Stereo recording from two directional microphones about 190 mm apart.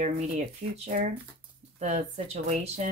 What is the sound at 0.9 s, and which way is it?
Speech, 45° right (ahead or behind).